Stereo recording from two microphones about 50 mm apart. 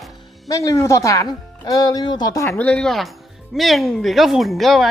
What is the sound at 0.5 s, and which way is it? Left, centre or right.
Speech, left.